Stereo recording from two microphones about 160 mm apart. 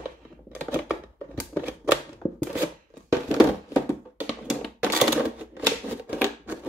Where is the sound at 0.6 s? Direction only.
15° right (ahead or behind).